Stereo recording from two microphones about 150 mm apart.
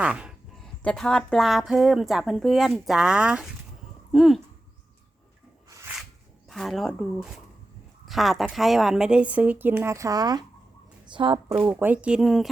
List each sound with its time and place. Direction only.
0.0 s speech: 5° right (ahead or behind)
0.8 s speech: 5° left (ahead or behind)
6.5 s speech: centre (ahead or behind); by 11.3 s 35° right (ahead or behind)
11.6 s speech: 10° right (ahead or behind)